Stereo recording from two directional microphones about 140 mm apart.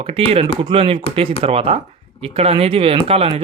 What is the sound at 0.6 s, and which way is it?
Speech, 40° right (ahead or behind).